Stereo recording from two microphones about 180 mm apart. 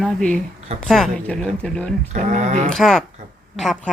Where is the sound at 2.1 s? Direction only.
40° right (ahead or behind).